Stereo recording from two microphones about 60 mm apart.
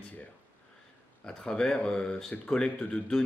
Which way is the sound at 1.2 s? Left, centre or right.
Centre.